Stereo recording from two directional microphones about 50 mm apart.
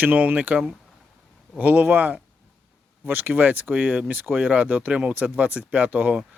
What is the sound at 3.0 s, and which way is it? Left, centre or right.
Speech, right.